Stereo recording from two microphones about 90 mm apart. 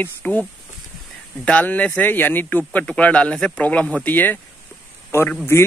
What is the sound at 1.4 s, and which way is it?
Speech, 15° left (ahead or behind).